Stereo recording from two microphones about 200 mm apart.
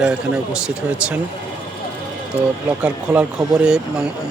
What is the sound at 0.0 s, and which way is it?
Speech, 5° right (ahead or behind).